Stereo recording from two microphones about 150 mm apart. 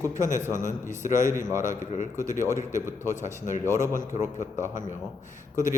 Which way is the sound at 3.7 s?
20° right (ahead or behind).